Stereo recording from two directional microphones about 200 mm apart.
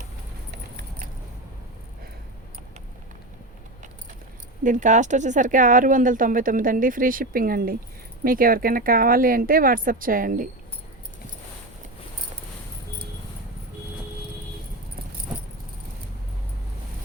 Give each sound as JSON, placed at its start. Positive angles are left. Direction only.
{"t": 4.6, "sound": "speech", "side_deg": -40}